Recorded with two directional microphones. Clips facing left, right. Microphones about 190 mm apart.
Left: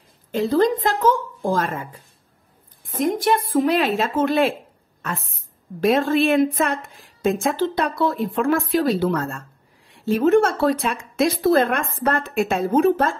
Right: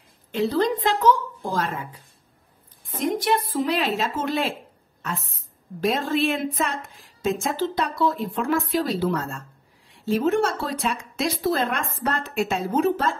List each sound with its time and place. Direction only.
0.3 s a woman's voice: 45° left (ahead or behind)
5.8 s a woman's voice: 60° left (ahead or behind)